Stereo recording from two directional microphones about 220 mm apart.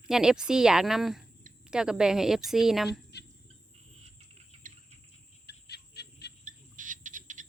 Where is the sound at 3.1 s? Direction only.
50° left (ahead or behind).